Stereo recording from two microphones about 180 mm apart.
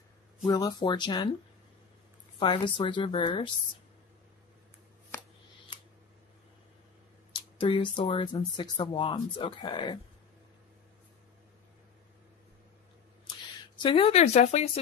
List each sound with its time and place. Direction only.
0.5 s speech: 20° left (ahead or behind)
2.3 s speech: 30° left (ahead or behind)
7.5 s speech: 30° left (ahead or behind)
13.7 s speech: 30° left (ahead or behind)